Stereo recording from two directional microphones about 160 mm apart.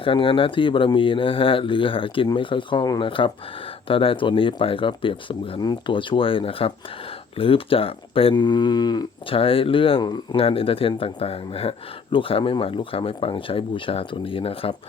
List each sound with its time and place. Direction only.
0.0 s speech: 35° left (ahead or behind)